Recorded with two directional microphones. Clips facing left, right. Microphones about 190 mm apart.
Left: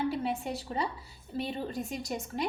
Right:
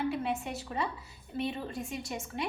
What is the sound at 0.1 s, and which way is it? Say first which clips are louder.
A woman's voice: left 1 dB; 35° left (ahead or behind).